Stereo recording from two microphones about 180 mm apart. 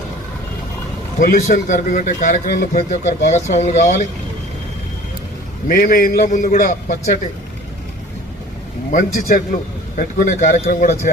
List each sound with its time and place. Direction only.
1.2 s a man's voice: 45° left (ahead or behind)
5.6 s a man's voice: 50° left (ahead or behind)
8.9 s a man's voice: 50° left (ahead or behind)